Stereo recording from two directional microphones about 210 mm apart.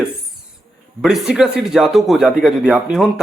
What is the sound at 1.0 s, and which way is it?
Speech, centre (ahead or behind).